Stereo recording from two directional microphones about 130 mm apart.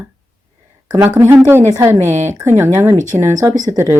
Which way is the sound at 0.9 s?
20° right (ahead or behind).